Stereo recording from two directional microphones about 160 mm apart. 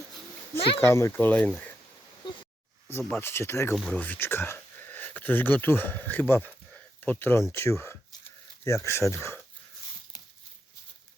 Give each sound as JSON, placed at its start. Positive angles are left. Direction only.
{"t": 0.8, "sound": "speech", "side_deg": 15}
{"t": 3.0, "sound": "speech", "side_deg": 10}